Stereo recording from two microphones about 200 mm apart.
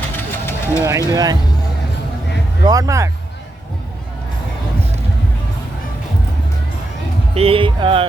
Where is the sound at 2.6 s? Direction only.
15° right (ahead or behind).